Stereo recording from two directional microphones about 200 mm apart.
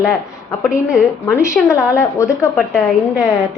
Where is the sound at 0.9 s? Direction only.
15° left (ahead or behind).